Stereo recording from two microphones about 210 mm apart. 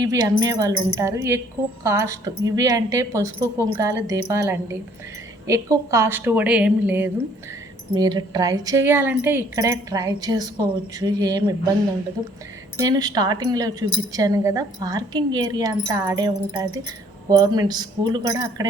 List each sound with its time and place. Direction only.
0.0 s speech: 15° right (ahead or behind)
7.9 s speech: 20° right (ahead or behind)
12.8 s speech: 20° right (ahead or behind)